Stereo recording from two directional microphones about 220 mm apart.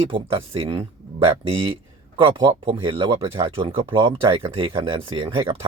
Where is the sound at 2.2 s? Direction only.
20° right (ahead or behind).